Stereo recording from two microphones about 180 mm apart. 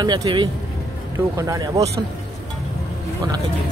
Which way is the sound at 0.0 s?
25° right (ahead or behind).